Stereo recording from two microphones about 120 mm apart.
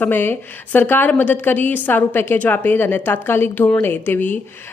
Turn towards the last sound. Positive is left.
turn(degrees=15)  # may be behind; listen again after turning